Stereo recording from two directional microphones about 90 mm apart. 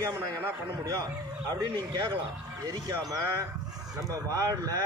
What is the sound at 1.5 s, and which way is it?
A man's voice, 50° right (ahead or behind).